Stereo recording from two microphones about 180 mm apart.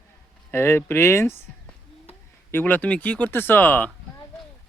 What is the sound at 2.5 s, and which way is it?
Speech, 10° left (ahead or behind).